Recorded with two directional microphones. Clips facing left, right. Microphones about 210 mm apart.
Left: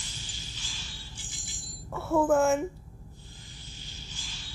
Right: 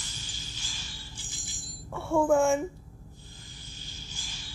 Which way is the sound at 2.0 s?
5° left (ahead or behind).